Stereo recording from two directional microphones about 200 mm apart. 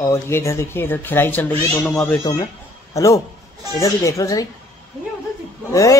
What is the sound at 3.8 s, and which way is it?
Speech, 15° left (ahead or behind).